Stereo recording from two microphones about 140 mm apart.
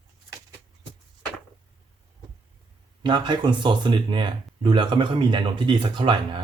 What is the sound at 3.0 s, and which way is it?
Speech, 35° right (ahead or behind).